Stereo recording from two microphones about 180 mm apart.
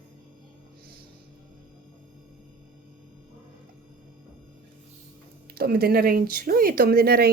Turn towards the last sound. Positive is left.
turn(degrees=-60)  # may be behind; listen again after turning